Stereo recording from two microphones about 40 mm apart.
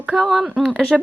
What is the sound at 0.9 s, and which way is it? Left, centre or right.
Speech, centre.